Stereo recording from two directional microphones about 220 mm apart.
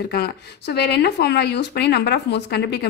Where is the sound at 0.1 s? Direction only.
45° left (ahead or behind).